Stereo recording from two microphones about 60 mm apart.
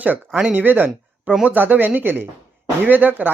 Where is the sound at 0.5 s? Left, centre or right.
Right.